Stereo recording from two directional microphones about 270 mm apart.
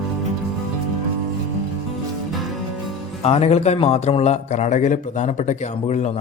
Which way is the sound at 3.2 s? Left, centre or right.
Left.